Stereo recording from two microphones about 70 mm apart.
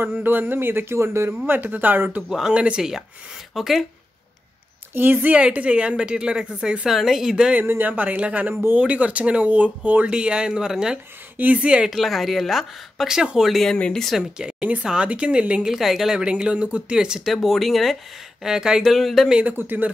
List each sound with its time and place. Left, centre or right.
0.0 s speech: right
1.5 s speech: right
2.2 s speech: centre
4.9 s speech: right; by 7.6 s centre
7.6 s speech: right; by 11.0 s centre
11.3 s speech: right
11.9 s speech: centre
13.5 s speech: centre
14.4 s speech: centre
15.7 s speech: centre
19.5 s speech: right